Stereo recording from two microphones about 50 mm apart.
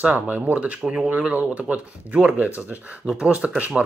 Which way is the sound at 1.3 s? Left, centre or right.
Right.